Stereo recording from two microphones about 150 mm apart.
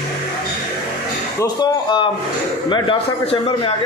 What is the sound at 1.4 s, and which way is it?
A man's voice, 30° left (ahead or behind).